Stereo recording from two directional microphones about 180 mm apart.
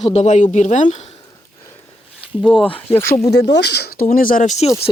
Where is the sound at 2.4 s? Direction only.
5° left (ahead or behind).